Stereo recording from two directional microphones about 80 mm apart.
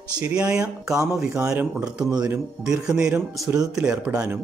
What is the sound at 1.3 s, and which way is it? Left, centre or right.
Speech, right.